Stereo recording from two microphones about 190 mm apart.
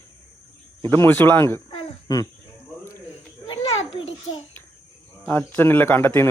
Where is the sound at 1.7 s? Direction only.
25° left (ahead or behind).